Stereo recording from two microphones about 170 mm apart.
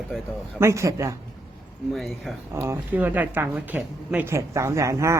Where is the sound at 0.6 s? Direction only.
15° right (ahead or behind).